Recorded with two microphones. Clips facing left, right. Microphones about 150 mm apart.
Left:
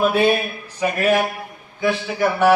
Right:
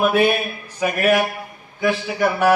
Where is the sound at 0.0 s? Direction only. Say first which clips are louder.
Even; 10° right (ahead or behind).